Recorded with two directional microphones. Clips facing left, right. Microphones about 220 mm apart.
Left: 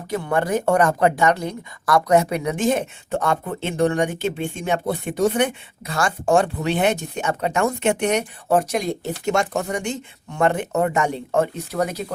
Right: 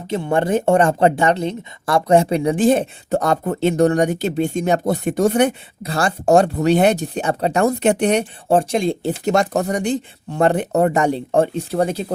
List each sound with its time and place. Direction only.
0.1 s speech: 25° right (ahead or behind)